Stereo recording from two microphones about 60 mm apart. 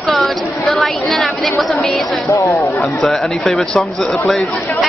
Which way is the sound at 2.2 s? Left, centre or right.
Left.